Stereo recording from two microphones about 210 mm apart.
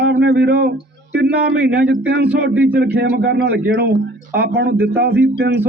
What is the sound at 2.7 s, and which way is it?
Speech, 50° right (ahead or behind).